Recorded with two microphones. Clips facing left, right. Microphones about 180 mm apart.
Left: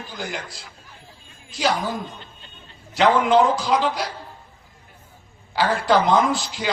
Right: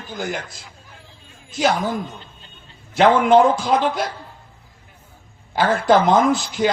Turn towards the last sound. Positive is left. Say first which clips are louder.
# right 5 dB
turn(degrees=-50)  # may be behind; listen again after turning